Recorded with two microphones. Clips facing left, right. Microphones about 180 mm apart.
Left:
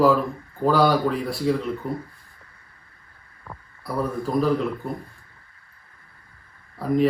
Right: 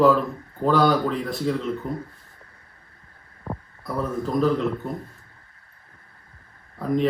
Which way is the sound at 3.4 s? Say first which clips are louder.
Right 8 dB; 30° right (ahead or behind).